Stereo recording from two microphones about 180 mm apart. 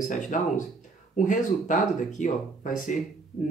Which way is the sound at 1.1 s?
45° left (ahead or behind).